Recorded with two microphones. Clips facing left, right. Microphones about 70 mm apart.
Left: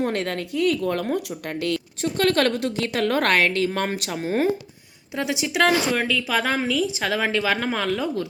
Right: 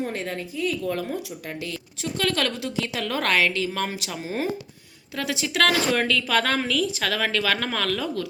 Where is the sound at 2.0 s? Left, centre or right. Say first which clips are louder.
Left 5 dB; left.